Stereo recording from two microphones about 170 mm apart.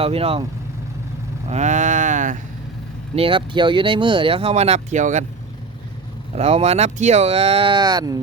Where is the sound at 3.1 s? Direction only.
30° right (ahead or behind).